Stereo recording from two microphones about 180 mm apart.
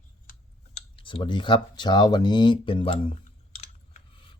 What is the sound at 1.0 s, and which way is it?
Speech, 30° left (ahead or behind).